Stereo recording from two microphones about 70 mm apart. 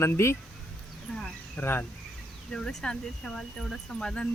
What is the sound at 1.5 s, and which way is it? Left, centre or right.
Speech, left.